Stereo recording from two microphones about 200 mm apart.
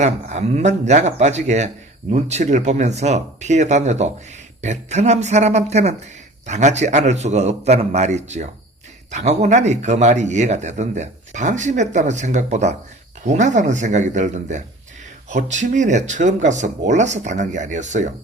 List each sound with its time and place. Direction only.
0.0 s speech: 35° right (ahead or behind)